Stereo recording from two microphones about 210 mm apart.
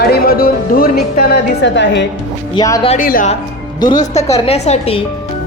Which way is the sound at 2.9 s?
40° left (ahead or behind).